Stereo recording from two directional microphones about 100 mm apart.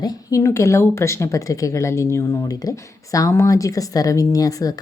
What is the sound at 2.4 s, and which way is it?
Speech, 35° left (ahead or behind).